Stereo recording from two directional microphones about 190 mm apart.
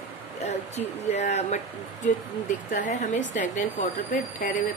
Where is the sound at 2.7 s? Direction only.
40° left (ahead or behind).